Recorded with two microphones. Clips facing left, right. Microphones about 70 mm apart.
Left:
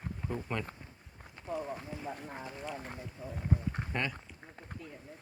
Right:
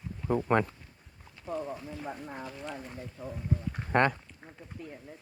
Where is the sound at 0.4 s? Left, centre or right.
Right.